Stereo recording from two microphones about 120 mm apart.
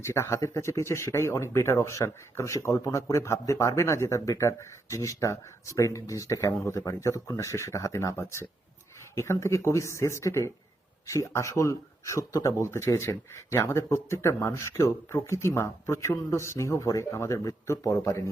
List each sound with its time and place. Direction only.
0.0 s speech: 20° left (ahead or behind)